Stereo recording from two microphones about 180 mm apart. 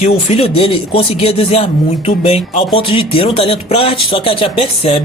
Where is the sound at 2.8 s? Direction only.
30° left (ahead or behind).